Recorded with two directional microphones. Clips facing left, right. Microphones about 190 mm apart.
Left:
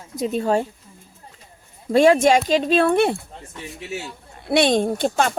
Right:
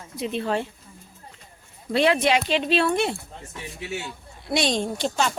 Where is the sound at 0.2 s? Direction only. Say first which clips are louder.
Left 5 dB; 40° left (ahead or behind).